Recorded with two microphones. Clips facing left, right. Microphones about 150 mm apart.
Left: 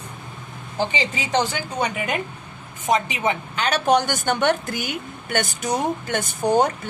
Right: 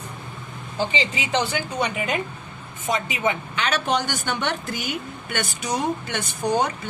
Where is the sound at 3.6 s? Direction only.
40° left (ahead or behind).